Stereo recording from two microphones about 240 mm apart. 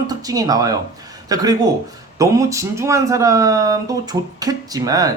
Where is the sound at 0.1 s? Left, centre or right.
Centre.